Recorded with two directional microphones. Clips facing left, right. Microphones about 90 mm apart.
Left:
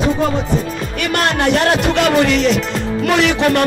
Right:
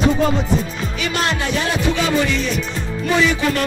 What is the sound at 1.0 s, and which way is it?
Speech, 60° left (ahead or behind).